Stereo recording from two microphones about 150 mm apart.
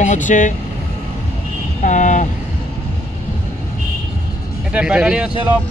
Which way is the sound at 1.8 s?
55° left (ahead or behind).